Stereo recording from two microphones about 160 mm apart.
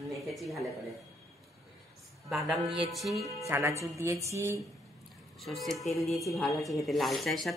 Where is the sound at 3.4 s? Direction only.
20° right (ahead or behind).